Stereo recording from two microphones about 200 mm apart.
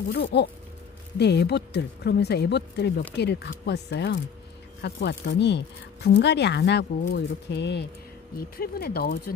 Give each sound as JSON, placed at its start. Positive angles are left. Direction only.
{"t": 0.1, "sound": "speech", "side_deg": 55}